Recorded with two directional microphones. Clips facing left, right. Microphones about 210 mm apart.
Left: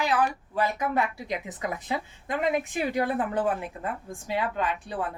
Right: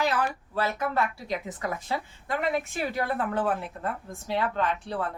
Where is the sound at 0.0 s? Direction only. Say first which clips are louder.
Left 1 dB; 15° left (ahead or behind).